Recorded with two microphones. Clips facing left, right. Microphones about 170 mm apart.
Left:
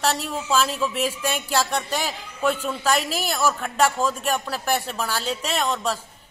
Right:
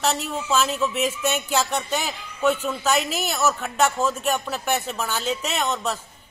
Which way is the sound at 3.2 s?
10° left (ahead or behind).